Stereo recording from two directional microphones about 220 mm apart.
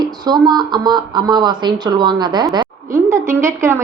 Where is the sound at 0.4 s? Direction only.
20° right (ahead or behind).